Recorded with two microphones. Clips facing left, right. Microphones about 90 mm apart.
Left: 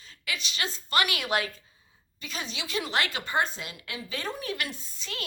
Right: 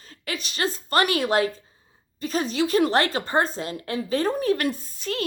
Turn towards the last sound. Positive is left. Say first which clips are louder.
# right 10 dB
turn(degrees=-45)  # may be behind; listen again after turning